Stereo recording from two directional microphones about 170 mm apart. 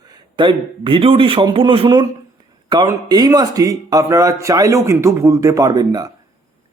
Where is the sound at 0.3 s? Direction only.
30° right (ahead or behind).